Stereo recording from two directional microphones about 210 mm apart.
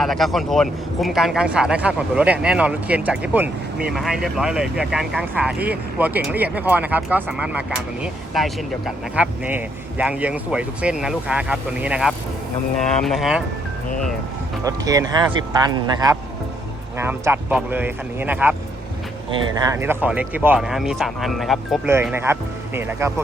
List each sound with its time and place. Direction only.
0.0 s speech: centre (ahead or behind)
14.6 s speech: 15° right (ahead or behind)
19.5 s speech: 15° right (ahead or behind); by 21.8 s centre (ahead or behind)
21.8 s speech: 10° right (ahead or behind)